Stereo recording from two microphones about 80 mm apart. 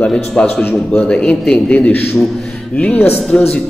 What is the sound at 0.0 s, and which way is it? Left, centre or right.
Speech, centre.